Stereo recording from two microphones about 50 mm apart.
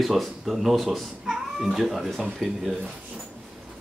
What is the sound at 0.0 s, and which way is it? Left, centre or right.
Speech, centre.